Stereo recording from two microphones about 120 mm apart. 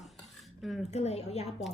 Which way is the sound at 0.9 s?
65° left (ahead or behind).